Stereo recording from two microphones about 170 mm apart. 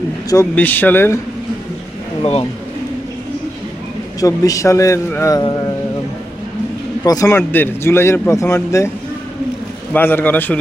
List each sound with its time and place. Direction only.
0.5 s a man's voice: 10° left (ahead or behind)
2.2 s speech: 35° left (ahead or behind)
4.2 s a man's voice: 20° left (ahead or behind)
7.0 s a man's voice: 20° left (ahead or behind)
9.9 s a man's voice: 10° left (ahead or behind)